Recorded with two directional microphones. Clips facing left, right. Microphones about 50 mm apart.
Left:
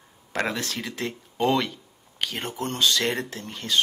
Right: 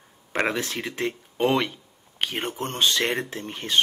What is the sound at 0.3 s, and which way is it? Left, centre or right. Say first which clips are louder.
Speech: right 2 dB; right.